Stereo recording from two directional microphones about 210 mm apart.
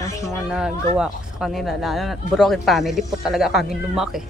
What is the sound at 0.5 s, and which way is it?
Speech, 5° right (ahead or behind).